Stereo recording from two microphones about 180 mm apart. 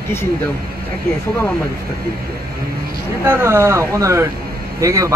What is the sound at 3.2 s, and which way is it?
Speech, 15° right (ahead or behind).